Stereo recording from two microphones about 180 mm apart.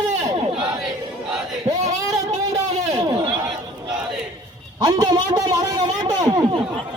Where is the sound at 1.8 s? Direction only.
40° right (ahead or behind).